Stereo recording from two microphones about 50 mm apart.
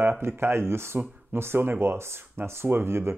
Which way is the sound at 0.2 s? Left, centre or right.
Right.